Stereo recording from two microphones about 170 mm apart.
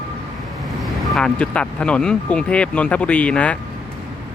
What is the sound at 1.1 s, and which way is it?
Speech, 5° left (ahead or behind).